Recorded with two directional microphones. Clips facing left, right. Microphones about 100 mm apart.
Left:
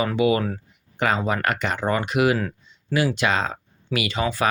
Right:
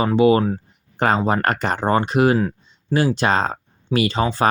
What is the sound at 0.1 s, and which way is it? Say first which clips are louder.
Speech: right 5 dB; 35° right (ahead or behind).